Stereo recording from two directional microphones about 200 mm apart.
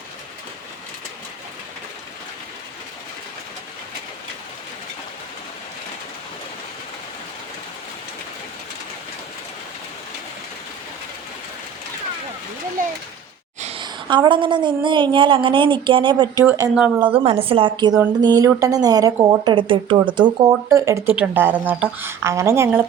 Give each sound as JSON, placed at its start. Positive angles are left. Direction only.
{"t": 13.6, "sound": "a woman's voice", "side_deg": -30}
{"t": 17.2, "sound": "a woman's voice", "side_deg": -30}